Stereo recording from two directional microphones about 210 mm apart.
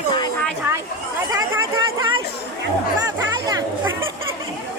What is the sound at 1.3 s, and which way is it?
Speech, 15° right (ahead or behind).